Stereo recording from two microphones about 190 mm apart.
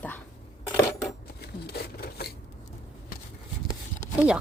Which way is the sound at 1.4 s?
55° left (ahead or behind).